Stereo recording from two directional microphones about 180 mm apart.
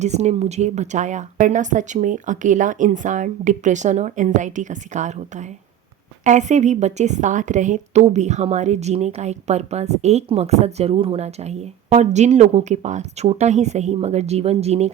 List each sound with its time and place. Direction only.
0.0 s speech: 40° right (ahead or behind)
6.2 s a woman's voice: 40° right (ahead or behind)